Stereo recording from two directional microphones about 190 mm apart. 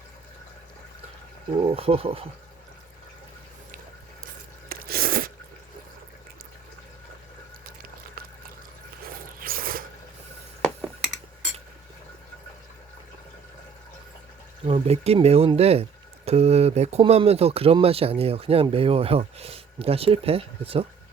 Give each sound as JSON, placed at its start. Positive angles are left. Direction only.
{"t": 1.6, "sound": "speech", "side_deg": -30}
{"t": 4.7, "sound": "biting", "side_deg": -50}
{"t": 9.4, "sound": "a sound", "side_deg": -50}
{"t": 14.6, "sound": "speech", "side_deg": -30}